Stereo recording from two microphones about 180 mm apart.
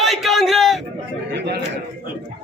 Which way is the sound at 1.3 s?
70° right (ahead or behind).